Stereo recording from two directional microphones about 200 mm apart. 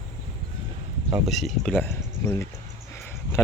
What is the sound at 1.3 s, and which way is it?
Speech, centre (ahead or behind).